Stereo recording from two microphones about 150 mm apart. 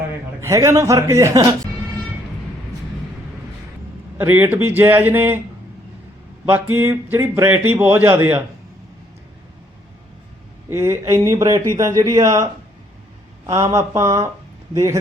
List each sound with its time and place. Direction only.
0.4 s a man's voice: 20° right (ahead or behind)
4.2 s speech: 15° right (ahead or behind)
6.5 s speech: 15° right (ahead or behind)
10.7 s a man's voice: 20° right (ahead or behind)
13.5 s a man's voice: 20° right (ahead or behind)